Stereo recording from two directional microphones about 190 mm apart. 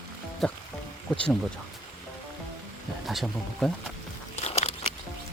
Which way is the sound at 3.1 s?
Centre (ahead or behind).